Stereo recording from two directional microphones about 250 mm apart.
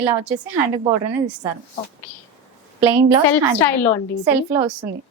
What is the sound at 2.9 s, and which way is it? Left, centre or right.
Speech, centre.